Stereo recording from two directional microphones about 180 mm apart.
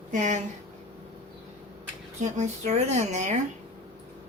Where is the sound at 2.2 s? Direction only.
40° right (ahead or behind).